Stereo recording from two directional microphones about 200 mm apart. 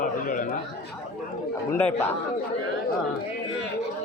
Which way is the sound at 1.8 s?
10° left (ahead or behind).